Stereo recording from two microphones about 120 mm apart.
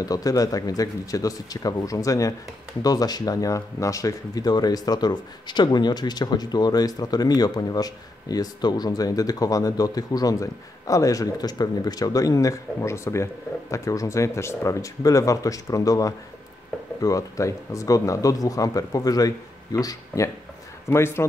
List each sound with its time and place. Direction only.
0.0 s speech: 30° left (ahead or behind)